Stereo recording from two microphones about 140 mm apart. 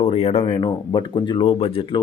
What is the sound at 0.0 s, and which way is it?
Speech, 45° left (ahead or behind).